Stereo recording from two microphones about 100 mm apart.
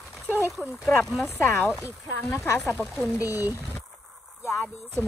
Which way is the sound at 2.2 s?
20° left (ahead or behind).